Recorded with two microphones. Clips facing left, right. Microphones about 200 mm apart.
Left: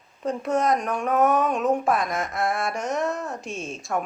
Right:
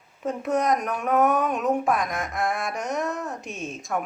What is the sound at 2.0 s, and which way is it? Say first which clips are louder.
Music: left 2 dB; 15° right (ahead or behind).